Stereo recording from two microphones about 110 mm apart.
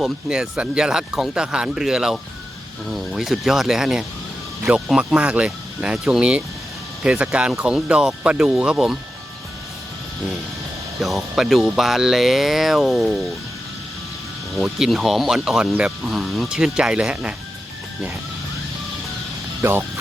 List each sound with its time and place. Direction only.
0.0 s speech: 5° right (ahead or behind)
11.0 s speech: centre (ahead or behind)
14.5 s speech: centre (ahead or behind)
19.6 s speech: 25° right (ahead or behind)